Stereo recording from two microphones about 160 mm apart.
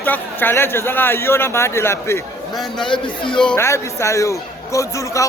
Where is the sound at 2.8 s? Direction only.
30° left (ahead or behind).